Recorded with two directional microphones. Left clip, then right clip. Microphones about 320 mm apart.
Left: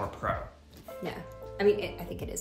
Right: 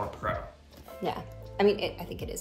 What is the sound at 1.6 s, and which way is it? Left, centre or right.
Speech, centre.